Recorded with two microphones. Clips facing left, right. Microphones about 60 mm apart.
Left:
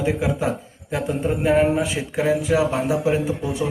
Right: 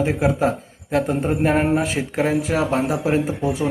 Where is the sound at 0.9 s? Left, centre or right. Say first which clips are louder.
Right 3 dB; right.